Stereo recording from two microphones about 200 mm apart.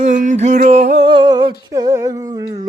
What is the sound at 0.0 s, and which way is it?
Music, 40° right (ahead or behind).